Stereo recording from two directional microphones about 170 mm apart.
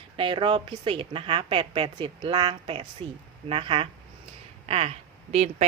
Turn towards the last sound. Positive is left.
turn(degrees=-40)  # may be behind; listen again after turning